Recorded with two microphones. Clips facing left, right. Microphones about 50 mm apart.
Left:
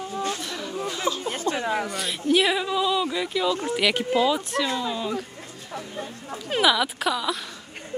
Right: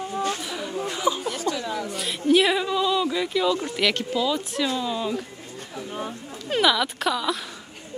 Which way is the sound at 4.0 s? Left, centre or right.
Centre.